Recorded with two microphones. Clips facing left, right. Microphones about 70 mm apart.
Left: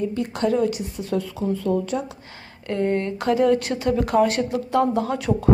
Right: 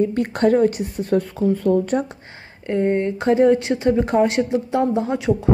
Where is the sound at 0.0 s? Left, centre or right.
Right.